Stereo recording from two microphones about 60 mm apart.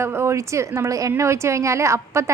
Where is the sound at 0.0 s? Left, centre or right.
Right.